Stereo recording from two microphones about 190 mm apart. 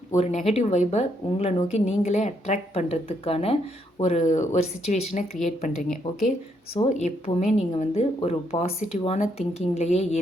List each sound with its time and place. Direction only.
0.2 s speech: 40° left (ahead or behind)
6.0 s speech: 25° left (ahead or behind)
6.9 s speech: 35° left (ahead or behind)